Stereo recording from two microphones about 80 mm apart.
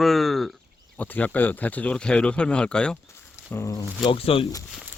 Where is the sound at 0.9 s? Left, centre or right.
Left.